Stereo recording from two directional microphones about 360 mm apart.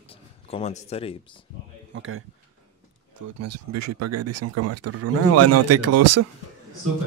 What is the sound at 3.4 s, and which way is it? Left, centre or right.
Speech, right.